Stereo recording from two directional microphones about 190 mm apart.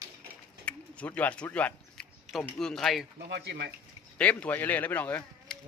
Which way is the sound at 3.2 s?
60° right (ahead or behind).